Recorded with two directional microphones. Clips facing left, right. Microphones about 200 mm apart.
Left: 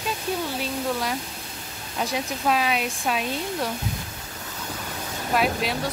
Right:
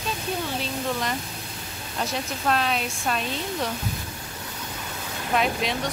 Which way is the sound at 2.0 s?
10° left (ahead or behind).